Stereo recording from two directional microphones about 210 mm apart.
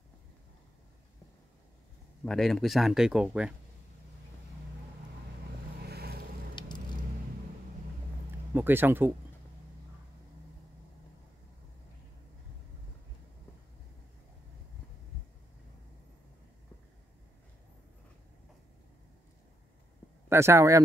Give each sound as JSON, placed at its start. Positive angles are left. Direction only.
{"t": 2.2, "sound": "speech", "side_deg": 0}
{"t": 5.9, "sound": "vehicle", "side_deg": -50}
{"t": 6.6, "sound": "vehicle", "side_deg": 20}
{"t": 8.5, "sound": "speech", "side_deg": -10}
{"t": 20.2, "sound": "speech", "side_deg": -10}